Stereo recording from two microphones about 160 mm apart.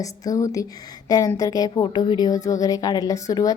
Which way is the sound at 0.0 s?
20° left (ahead or behind).